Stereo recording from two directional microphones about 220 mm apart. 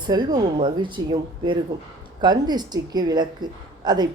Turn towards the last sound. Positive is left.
turn(degrees=-20)  # may be behind; listen again after turning